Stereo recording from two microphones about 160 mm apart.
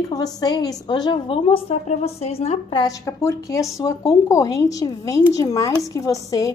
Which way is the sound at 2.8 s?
20° left (ahead or behind).